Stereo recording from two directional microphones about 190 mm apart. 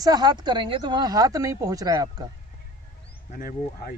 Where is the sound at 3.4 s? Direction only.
50° left (ahead or behind).